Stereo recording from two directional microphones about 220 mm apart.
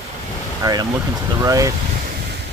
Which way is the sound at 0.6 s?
15° right (ahead or behind).